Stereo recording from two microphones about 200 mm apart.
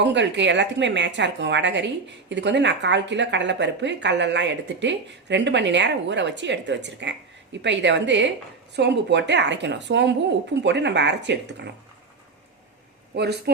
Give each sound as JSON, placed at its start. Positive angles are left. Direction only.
{"t": 0.0, "sound": "a woman's voice", "side_deg": -60}
{"t": 13.1, "sound": "a woman's voice", "side_deg": -55}